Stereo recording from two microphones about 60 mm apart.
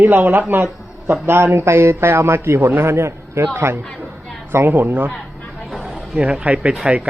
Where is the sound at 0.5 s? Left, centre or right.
Right.